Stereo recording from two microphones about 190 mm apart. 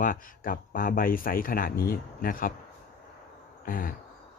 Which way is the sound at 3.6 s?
45° left (ahead or behind).